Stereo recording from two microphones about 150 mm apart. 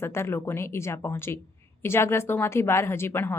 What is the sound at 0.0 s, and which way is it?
Speech, 15° left (ahead or behind).